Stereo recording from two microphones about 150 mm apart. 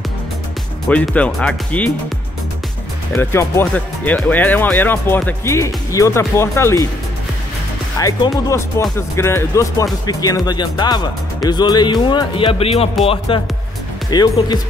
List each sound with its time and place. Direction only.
0.8 s speech: 10° left (ahead or behind)
3.2 s speech: 15° left (ahead or behind)
8.0 s speech: 20° left (ahead or behind); by 13.4 s 40° left (ahead or behind)
14.1 s speech: 25° left (ahead or behind)